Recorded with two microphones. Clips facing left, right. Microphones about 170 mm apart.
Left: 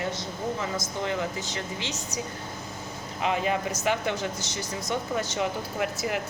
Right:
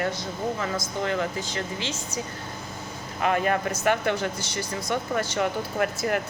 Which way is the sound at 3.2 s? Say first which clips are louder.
Right 3 dB; 55° right (ahead or behind).